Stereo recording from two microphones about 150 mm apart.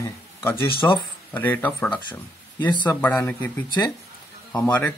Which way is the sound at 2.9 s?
10° left (ahead or behind).